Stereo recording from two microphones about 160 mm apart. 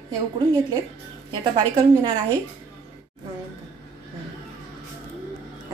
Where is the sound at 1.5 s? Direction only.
30° right (ahead or behind).